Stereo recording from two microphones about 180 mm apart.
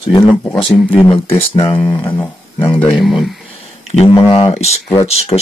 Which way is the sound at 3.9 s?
35° left (ahead or behind).